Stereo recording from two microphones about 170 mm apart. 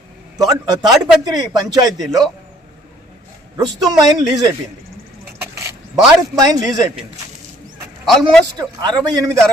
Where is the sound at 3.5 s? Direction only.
20° right (ahead or behind).